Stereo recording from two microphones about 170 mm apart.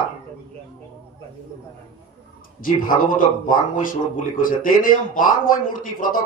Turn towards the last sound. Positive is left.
turn(degrees=55)  # may be behind; listen again after turning